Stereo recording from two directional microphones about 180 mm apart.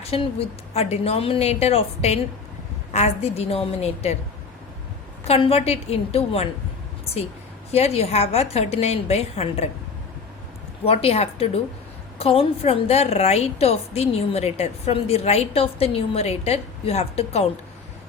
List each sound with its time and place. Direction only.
0.0 s a woman's voice: 35° left (ahead or behind)
5.2 s a woman's voice: 35° left (ahead or behind)
10.8 s a woman's voice: 35° left (ahead or behind)